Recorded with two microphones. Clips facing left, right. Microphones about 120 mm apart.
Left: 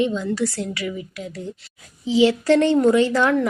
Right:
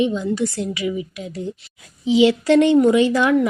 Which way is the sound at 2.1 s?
20° right (ahead or behind).